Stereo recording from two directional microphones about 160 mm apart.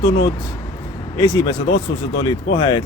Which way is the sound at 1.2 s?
25° left (ahead or behind).